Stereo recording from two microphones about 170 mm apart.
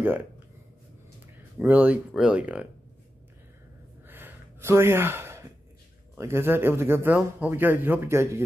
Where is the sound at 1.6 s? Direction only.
10° right (ahead or behind).